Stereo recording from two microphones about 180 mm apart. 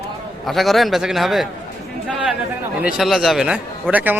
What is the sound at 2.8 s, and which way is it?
Speech, centre (ahead or behind).